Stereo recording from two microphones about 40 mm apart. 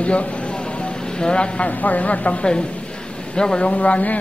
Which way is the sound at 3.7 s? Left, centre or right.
Left.